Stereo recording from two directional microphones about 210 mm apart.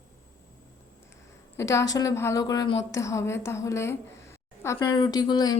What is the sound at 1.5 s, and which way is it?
A woman's voice, 15° left (ahead or behind).